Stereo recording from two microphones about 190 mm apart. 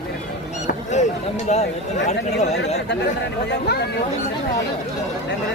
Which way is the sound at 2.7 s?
65° left (ahead or behind).